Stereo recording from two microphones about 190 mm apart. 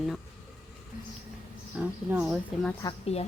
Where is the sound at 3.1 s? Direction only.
35° left (ahead or behind).